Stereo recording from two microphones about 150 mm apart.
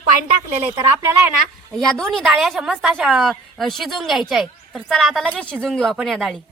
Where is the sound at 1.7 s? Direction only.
5° left (ahead or behind).